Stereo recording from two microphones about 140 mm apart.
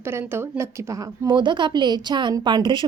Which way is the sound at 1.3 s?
35° right (ahead or behind).